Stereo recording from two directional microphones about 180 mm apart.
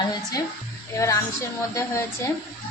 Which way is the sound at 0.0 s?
20° left (ahead or behind).